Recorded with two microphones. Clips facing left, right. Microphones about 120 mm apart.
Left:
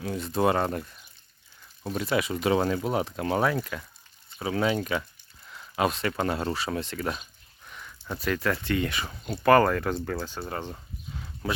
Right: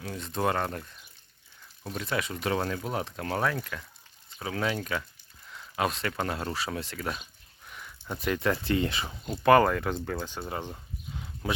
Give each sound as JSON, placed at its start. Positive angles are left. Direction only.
{"t": 0.0, "sound": "speech", "side_deg": 5}
{"t": 1.9, "sound": "speech", "side_deg": 10}
{"t": 9.2, "sound": "speech", "side_deg": -15}
{"t": 9.9, "sound": "speech", "side_deg": 0}
{"t": 10.5, "sound": "a sound", "side_deg": -15}